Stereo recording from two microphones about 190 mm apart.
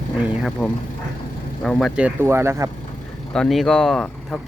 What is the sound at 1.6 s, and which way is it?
Speech, 5° left (ahead or behind).